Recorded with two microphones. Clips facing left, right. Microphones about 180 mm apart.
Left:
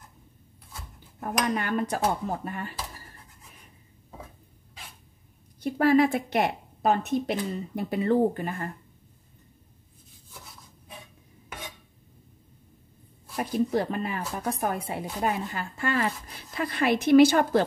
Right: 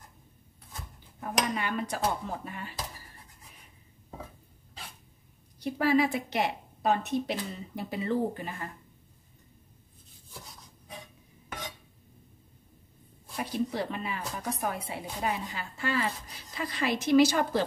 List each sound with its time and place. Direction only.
1.2 s speech: 50° left (ahead or behind)
5.6 s speech: 50° left (ahead or behind)
13.4 s speech: 45° left (ahead or behind)